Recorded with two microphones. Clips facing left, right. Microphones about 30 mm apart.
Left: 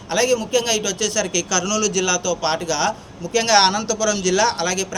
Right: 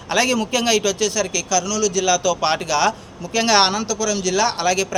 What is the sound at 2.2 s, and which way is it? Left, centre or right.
Speech, right.